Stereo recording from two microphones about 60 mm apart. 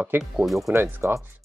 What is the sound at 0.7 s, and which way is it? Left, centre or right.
Speech, right.